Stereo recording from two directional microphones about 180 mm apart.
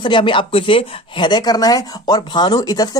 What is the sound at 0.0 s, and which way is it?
Speech, 25° left (ahead or behind).